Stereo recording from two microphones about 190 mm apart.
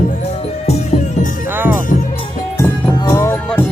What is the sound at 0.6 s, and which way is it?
Music, 35° left (ahead or behind).